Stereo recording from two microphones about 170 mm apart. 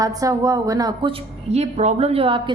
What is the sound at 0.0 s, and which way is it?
A woman's voice, 20° right (ahead or behind).